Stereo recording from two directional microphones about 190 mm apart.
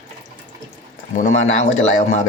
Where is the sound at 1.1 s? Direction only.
40° left (ahead or behind).